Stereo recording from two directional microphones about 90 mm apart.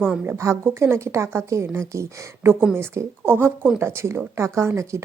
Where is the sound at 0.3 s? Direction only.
30° right (ahead or behind).